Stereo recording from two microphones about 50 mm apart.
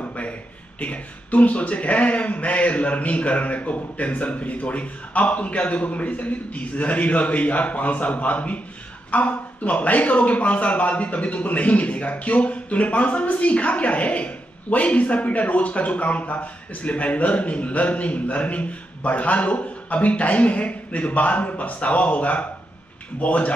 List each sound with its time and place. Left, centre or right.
0.1 s a man's voice: left